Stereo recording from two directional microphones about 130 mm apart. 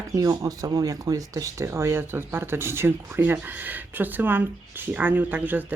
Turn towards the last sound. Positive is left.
turn(degrees=-15)  # may be behind; listen again after turning